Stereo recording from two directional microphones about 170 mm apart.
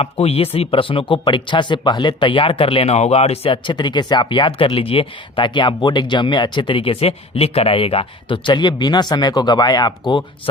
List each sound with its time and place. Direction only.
0.0 s speech: 35° left (ahead or behind)